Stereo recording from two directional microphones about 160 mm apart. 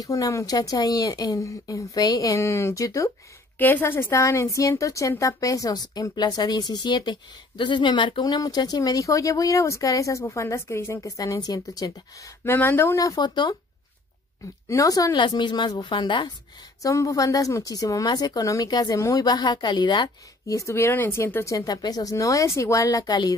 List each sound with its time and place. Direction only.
0.0 s a woman's voice: 20° left (ahead or behind)
14.7 s a woman's voice: 20° left (ahead or behind)